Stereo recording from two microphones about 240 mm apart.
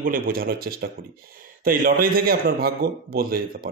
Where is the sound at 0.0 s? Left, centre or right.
Right.